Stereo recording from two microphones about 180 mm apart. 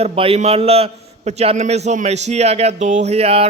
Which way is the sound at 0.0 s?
35° right (ahead or behind).